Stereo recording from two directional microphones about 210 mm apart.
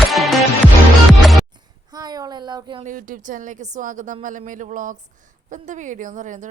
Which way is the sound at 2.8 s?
40° right (ahead or behind).